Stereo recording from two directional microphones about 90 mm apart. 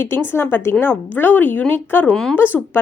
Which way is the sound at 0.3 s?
25° left (ahead or behind).